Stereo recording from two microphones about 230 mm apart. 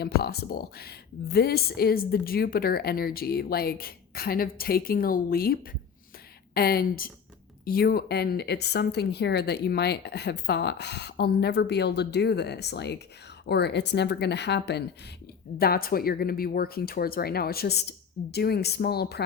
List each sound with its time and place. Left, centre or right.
0.0 s speech: left